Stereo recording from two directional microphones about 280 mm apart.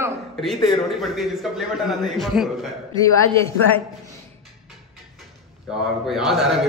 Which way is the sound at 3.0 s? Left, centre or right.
Centre.